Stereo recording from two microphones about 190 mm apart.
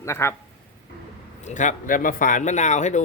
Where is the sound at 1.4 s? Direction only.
40° left (ahead or behind).